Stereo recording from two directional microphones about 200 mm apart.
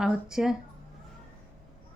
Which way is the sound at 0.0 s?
Centre (ahead or behind).